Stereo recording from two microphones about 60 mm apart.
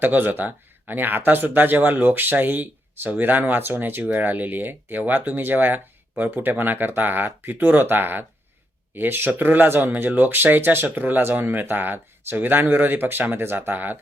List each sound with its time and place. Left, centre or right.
0.0 s speech: right